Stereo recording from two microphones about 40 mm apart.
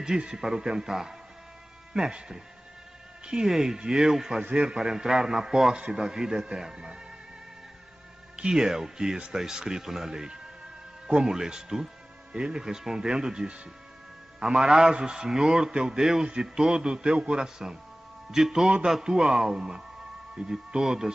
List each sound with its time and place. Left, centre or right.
0.2 s a man's voice: centre
3.3 s a man's voice: centre
8.5 s a man's voice: centre